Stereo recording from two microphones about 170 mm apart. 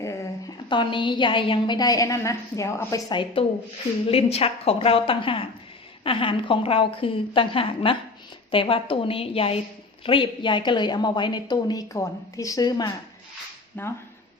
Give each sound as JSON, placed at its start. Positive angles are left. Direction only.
{"t": 0.0, "sound": "a sound", "side_deg": 15}
{"t": 0.7, "sound": "a woman's voice", "side_deg": 30}
{"t": 13.7, "sound": "speech", "side_deg": 10}